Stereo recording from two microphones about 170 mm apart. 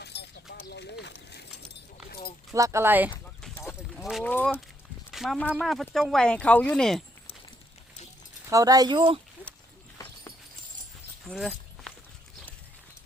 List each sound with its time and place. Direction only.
0.0 s clip-clop: 80° left
0.7 s a sound: 80° left
2.0 s a sound: 65° left (ahead or behind)
2.5 s speech: 20° right (ahead or behind)
3.2 s clip-clop: 5° left (ahead or behind)
4.2 s speech: 10° left (ahead or behind)
5.1 s speech: centre (ahead or behind)
8.4 s speech: 20° right (ahead or behind)
11.3 s a sound: centre (ahead or behind)